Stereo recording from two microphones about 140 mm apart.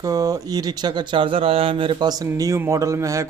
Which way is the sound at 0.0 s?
25° right (ahead or behind).